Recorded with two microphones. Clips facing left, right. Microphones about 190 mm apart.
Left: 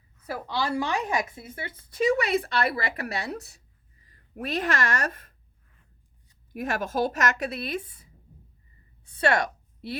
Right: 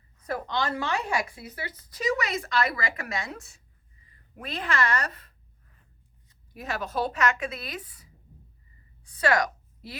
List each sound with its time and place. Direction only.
0.3 s a woman's voice: 10° left (ahead or behind); by 5.3 s 45° left (ahead or behind)
6.5 s a woman's voice: 50° left (ahead or behind)
7.7 s a woman's voice: 25° left (ahead or behind)